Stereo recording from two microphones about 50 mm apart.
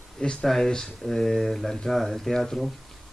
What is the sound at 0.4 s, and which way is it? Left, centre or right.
Speech, centre.